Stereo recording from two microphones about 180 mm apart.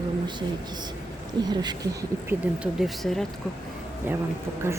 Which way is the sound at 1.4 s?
25° right (ahead or behind).